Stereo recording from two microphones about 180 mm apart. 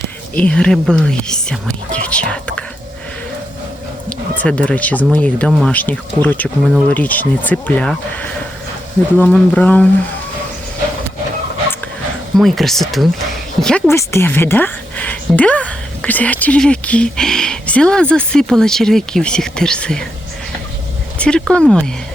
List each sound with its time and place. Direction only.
0.3 s a woman's voice: 5° left (ahead or behind)
4.4 s a woman's voice: 5° left (ahead or behind)
12.4 s a woman's voice: centre (ahead or behind)
13.9 s a woman's voice: 15° left (ahead or behind)
21.2 s a woman's voice: 5° left (ahead or behind)